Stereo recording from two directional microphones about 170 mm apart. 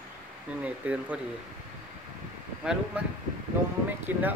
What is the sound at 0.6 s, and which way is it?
Speech, 5° right (ahead or behind).